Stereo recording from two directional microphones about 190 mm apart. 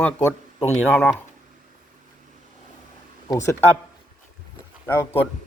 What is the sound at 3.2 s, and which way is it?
Speech, 15° left (ahead or behind).